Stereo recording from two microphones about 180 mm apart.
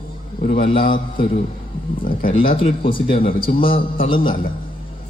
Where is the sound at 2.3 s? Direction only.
30° left (ahead or behind).